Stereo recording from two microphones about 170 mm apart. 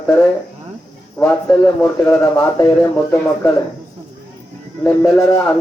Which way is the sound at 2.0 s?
20° left (ahead or behind).